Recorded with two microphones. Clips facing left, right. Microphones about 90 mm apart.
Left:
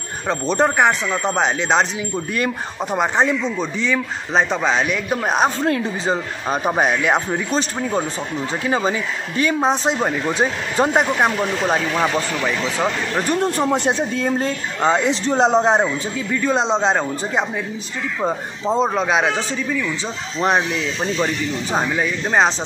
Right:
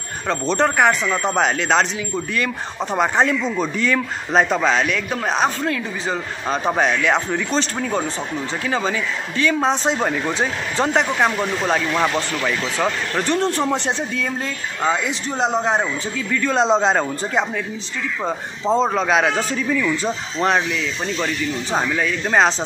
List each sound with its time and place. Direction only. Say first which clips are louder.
0.3 s a man's voice: left 1 dB; 5° left (ahead or behind)
2.9 s a man's voice: even; centre (ahead or behind)
4.3 s a man's voice: right 1 dB; 5° right (ahead or behind); by 9.6 s 20° left (ahead or behind)
9.6 s a man's voice: left 1 dB; 5° left (ahead or behind)
14.1 s speech: left 4 dB; 30° left (ahead or behind)
16.4 s a man's voice: right 1 dB; centre (ahead or behind)
21.7 s speech: even; 15° left (ahead or behind)